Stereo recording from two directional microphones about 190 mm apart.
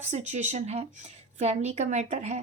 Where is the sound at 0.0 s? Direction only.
35° right (ahead or behind).